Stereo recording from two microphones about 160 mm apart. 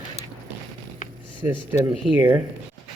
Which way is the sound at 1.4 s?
10° right (ahead or behind).